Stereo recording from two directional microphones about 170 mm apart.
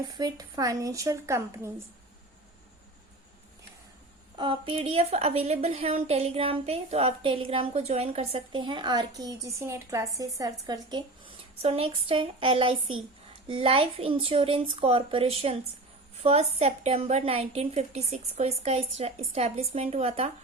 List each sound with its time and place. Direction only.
0.2 s a woman's voice: 20° right (ahead or behind)
4.4 s a woman's voice: 30° right (ahead or behind)
11.6 s a woman's voice: 35° right (ahead or behind)